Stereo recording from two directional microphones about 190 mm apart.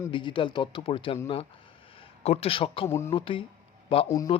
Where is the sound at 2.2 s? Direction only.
35° left (ahead or behind).